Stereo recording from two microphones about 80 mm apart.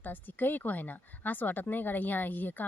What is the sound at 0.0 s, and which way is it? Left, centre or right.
Speech, left.